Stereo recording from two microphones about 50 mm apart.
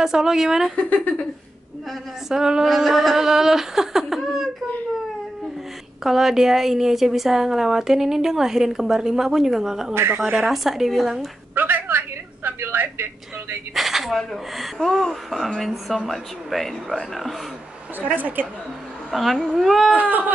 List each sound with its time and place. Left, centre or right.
0.0 s a woman's voice: centre
0.7 s a woman's voice: left
2.2 s a woman's voice: centre
6.0 s a woman's voice: centre
11.5 s a sound: right
12.5 s speech: right
13.7 s speech: centre
18.1 s a woman's voice: right
19.0 s speech: centre
19.9 s a woman's voice: right